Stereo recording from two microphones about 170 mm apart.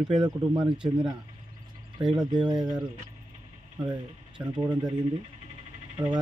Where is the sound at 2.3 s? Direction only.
25° right (ahead or behind).